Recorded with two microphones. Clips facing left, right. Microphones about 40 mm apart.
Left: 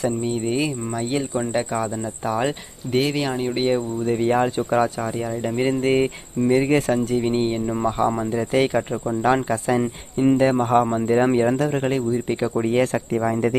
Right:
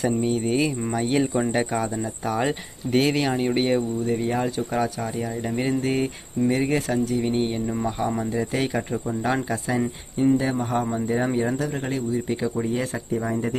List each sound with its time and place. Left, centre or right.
0.0 s speech: centre
4.0 s speech: left
4.4 s a man's voice: left
5.0 s a man's voice: centre
6.4 s speech: centre
6.7 s speech: left
7.2 s a man's voice: centre
8.4 s speech: left
8.7 s a man's voice: left
9.5 s a man's voice: left
12.3 s a man's voice: left
12.6 s speech: left